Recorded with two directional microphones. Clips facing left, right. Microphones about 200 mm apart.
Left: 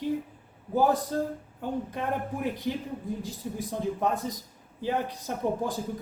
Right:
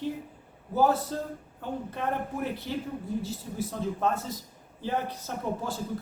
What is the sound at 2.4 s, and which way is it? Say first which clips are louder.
Speech: left 2 dB; 15° left (ahead or behind).